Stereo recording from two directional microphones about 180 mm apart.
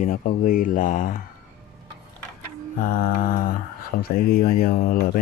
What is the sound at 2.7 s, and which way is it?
Mantra, 50° left (ahead or behind).